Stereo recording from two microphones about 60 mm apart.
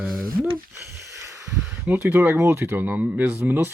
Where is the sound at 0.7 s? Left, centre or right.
Right.